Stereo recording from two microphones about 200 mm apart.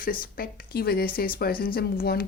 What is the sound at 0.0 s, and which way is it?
A woman's voice, 45° left (ahead or behind).